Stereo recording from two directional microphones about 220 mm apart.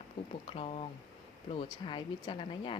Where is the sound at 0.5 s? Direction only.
25° left (ahead or behind).